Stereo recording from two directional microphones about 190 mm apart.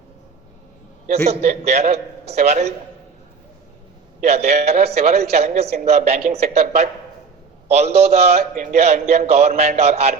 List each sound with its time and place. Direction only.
1.0 s a man's voice: 35° right (ahead or behind)
4.2 s a man's voice: 35° right (ahead or behind)